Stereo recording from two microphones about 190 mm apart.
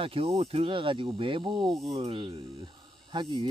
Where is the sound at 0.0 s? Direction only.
30° right (ahead or behind).